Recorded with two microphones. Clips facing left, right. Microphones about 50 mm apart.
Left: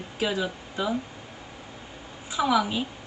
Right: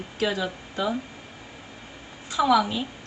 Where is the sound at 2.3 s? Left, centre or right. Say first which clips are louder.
Right 3 dB; centre.